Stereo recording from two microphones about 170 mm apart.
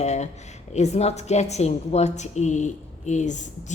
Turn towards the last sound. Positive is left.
turn(degrees=45)  # may be behind; listen again after turning